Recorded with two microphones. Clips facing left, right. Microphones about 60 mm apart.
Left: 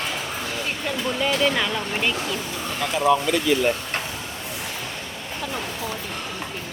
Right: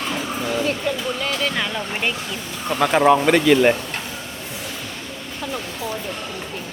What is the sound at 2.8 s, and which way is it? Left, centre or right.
Speech, right.